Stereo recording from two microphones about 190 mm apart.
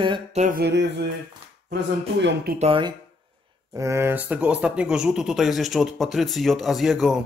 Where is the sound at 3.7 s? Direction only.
15° right (ahead or behind).